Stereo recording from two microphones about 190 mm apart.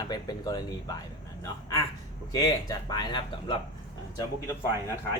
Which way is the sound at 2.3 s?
20° left (ahead or behind).